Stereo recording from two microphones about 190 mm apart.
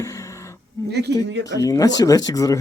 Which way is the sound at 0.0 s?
15° left (ahead or behind).